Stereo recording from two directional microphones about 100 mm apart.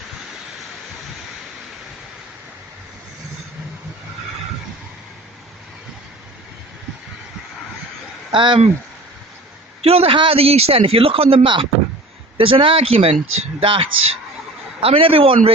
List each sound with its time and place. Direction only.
8.3 s speech: 55° right (ahead or behind)
9.8 s speech: 75° right (ahead or behind)